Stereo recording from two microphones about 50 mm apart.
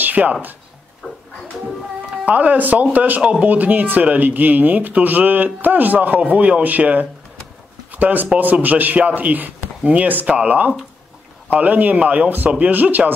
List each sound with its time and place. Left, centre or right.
0.0 s speech: right
1.0 s a sound: right
2.2 s a man's voice: right